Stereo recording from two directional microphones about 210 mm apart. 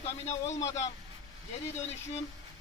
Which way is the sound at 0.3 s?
30° left (ahead or behind).